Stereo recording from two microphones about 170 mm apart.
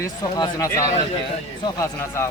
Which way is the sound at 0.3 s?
20° left (ahead or behind).